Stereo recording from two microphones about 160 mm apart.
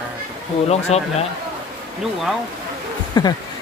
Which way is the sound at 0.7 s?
40° left (ahead or behind).